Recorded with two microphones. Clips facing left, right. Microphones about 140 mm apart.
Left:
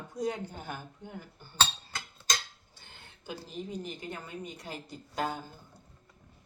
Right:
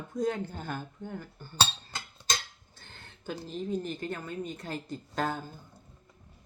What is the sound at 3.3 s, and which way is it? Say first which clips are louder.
Speech: right 5 dB; 15° left (ahead or behind).